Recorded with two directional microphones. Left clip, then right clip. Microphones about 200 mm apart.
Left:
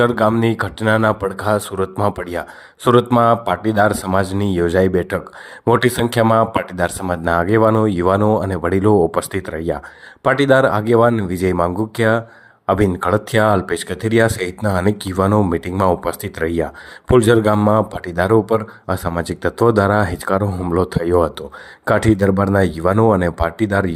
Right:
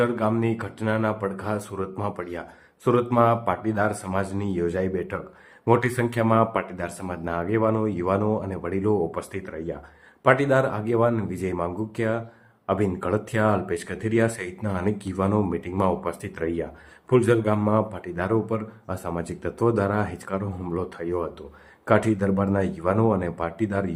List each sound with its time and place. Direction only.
0.0 s speech: 35° left (ahead or behind)